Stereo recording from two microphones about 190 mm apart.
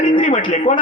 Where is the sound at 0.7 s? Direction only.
25° left (ahead or behind).